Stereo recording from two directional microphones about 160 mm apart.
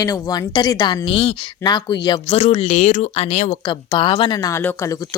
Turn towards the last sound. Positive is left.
turn(degrees=20)  # may be behind; listen again after turning